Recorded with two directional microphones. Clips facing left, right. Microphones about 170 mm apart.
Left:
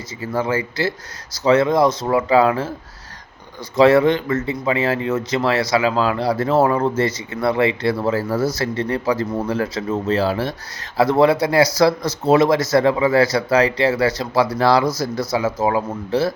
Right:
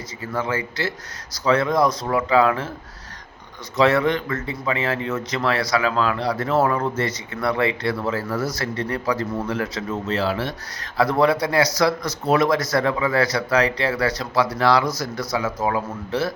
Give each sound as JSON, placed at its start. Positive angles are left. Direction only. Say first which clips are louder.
{"t": 0.2, "sound": "speech", "louder": "left 4 dB", "side_deg": 30}
{"t": 3.8, "sound": "speech", "louder": "left 5 dB", "side_deg": 30}
{"t": 10.9, "sound": "speech", "louder": "left 4 dB", "side_deg": 25}